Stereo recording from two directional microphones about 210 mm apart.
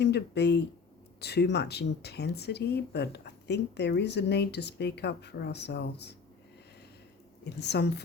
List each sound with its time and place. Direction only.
0.0 s speech: 50° left (ahead or behind)
7.5 s speech: 55° left (ahead or behind)